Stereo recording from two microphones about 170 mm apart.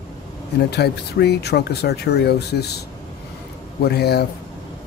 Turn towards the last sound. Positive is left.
turn(degrees=70)  # may be behind; listen again after turning